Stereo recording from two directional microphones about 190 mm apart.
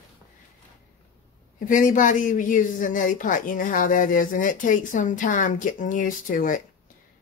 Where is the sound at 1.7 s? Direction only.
45° left (ahead or behind).